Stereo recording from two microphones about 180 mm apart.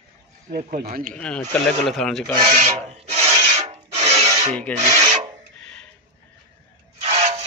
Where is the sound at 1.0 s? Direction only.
5° left (ahead or behind).